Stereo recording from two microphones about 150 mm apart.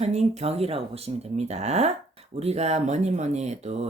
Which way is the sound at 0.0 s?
45° right (ahead or behind).